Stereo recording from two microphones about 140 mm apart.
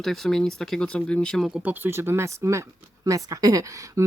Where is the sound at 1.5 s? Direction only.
10° right (ahead or behind).